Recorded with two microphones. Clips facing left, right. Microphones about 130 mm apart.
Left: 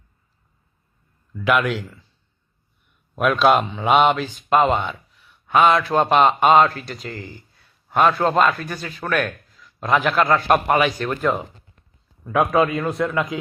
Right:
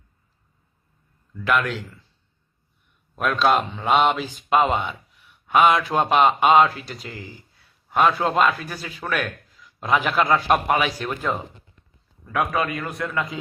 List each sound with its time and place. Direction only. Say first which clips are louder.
1.5 s a man's voice: left 3 dB; 5° left (ahead or behind)
3.2 s speech: left 3 dB; 5° left (ahead or behind)
12.2 s a man's voice: left 6 dB; 20° left (ahead or behind)